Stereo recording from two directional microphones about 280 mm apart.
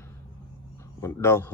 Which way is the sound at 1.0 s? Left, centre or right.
Centre.